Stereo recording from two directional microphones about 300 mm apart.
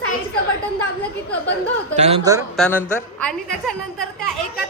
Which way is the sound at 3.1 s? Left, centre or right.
Centre.